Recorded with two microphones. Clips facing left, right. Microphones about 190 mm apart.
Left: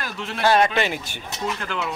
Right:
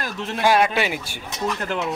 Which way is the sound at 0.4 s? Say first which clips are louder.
Even; 10° right (ahead or behind).